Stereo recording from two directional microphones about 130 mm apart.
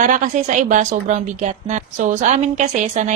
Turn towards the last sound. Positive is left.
turn(degrees=-65)  # may be behind; listen again after turning